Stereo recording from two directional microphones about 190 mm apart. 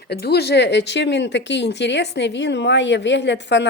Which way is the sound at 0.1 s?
60° left (ahead or behind).